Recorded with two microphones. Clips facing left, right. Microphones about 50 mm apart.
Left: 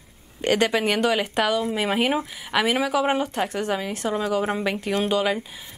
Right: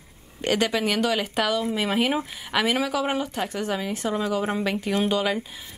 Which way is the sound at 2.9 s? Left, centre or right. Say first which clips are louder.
Left 3 dB; left.